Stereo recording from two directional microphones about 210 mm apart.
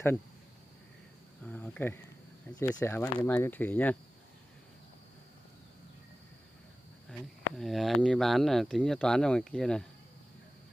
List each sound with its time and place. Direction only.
1.4 s cricket: 5° left (ahead or behind)
2.6 s speech: 10° left (ahead or behind)
7.1 s speech: centre (ahead or behind)